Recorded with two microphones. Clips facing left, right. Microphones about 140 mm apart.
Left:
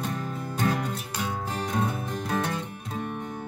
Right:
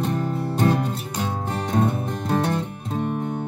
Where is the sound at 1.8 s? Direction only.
30° right (ahead or behind).